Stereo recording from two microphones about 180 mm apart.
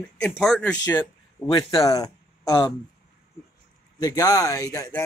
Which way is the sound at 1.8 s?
20° left (ahead or behind).